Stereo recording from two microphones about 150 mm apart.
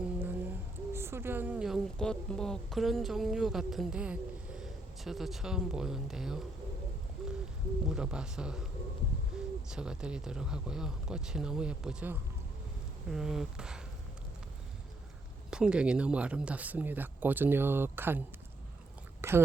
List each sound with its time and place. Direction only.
0.0 s a sound: 15° right (ahead or behind)
0.9 s speech: 15° right (ahead or behind)
7.2 s hoot: 5° right (ahead or behind)
7.9 s speech: 5° right (ahead or behind)
9.3 s hoot: 5° right (ahead or behind)
9.6 s speech: 5° right (ahead or behind)
15.4 s speech: 5° right (ahead or behind)
19.2 s speech: 15° right (ahead or behind)